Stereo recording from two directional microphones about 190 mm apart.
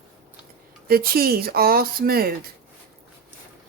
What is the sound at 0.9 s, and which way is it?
Speech, 55° right (ahead or behind).